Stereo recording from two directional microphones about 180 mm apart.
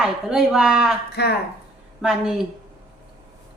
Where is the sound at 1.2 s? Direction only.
65° left (ahead or behind).